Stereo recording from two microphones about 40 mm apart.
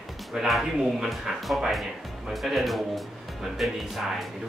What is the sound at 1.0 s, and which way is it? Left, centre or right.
Speech, centre.